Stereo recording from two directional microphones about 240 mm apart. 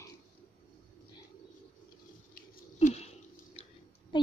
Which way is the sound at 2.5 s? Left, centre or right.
Left.